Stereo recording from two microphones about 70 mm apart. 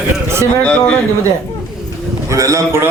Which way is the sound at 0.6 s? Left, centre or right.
Centre.